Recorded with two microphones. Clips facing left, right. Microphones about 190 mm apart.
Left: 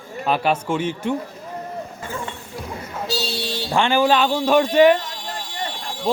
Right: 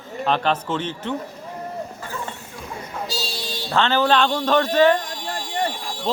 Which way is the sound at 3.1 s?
65° left (ahead or behind).